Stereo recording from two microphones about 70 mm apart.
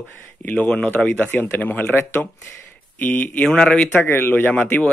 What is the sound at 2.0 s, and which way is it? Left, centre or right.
Speech, left.